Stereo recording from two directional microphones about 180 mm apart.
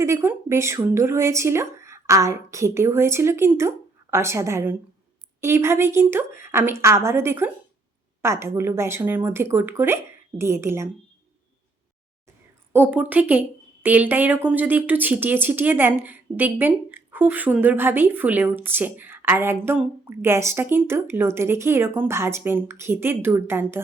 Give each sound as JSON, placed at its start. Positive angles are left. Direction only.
{"t": 0.0, "sound": "speech", "side_deg": -15}
{"t": 12.7, "sound": "speech", "side_deg": -10}